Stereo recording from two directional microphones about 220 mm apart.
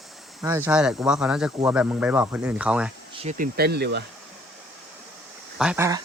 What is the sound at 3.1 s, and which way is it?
Speech, 30° right (ahead or behind).